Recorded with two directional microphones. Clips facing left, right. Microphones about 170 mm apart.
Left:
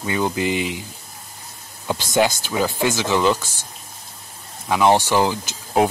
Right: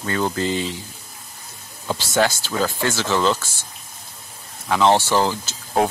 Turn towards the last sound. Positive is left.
turn(degrees=15)  # may be behind; listen again after turning